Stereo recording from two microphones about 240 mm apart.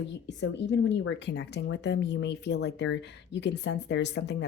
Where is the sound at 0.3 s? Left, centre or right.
Left.